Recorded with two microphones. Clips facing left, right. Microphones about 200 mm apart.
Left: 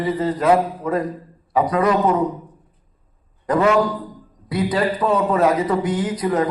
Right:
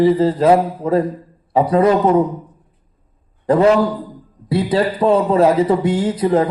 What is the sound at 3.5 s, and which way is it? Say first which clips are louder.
A man's voice: right 4 dB; 30° right (ahead or behind).